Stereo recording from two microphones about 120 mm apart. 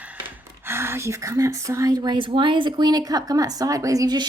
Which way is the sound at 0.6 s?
20° right (ahead or behind).